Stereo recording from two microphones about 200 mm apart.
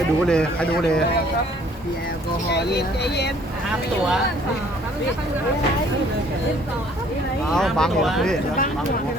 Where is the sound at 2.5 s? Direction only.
55° left (ahead or behind).